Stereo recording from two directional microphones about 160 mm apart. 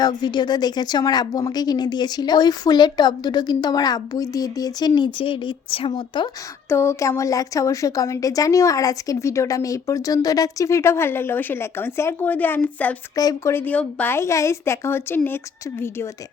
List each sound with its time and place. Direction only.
0.0 s a woman's voice: 25° left (ahead or behind)
6.7 s a woman's voice: 15° left (ahead or behind)
13.1 s speech: 20° left (ahead or behind)